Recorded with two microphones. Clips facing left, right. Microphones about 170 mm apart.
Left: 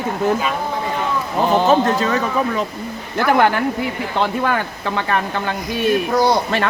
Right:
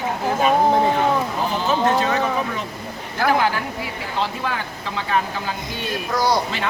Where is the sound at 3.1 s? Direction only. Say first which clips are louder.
Left 4 dB; 60° left (ahead or behind).